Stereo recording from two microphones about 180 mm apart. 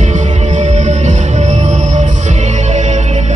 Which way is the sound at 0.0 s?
40° right (ahead or behind).